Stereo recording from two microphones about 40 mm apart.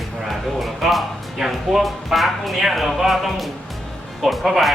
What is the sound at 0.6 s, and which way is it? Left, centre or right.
Speech, centre.